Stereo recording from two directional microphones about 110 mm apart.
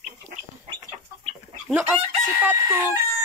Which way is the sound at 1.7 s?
15° right (ahead or behind).